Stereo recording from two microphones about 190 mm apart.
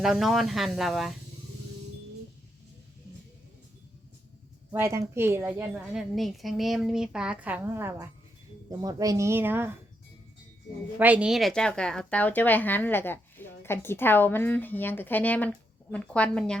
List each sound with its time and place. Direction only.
0.0 s speech: centre (ahead or behind)
4.7 s a woman's voice: 15° right (ahead or behind)
10.9 s speech: 10° right (ahead or behind)